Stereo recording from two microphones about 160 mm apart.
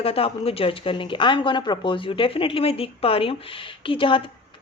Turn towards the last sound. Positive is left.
turn(degrees=35)  # may be behind; listen again after turning